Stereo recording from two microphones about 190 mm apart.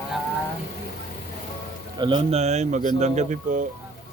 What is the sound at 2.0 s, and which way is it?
Speech, 25° right (ahead or behind).